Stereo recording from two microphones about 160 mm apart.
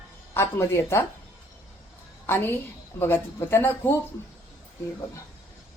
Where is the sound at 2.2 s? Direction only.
15° left (ahead or behind).